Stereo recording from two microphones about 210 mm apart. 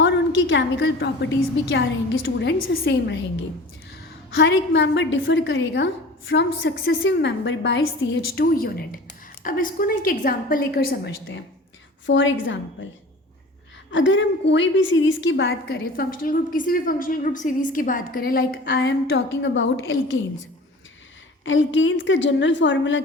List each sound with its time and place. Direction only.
0.0 s a woman's voice: 60° left (ahead or behind)
4.4 s a woman's voice: 60° left (ahead or behind)
12.0 s a woman's voice: 60° left (ahead or behind)
13.9 s a woman's voice: 60° left (ahead or behind)
15.6 s a woman's voice: 45° left (ahead or behind); by 19.8 s 60° left (ahead or behind)
21.4 s a woman's voice: 65° left (ahead or behind)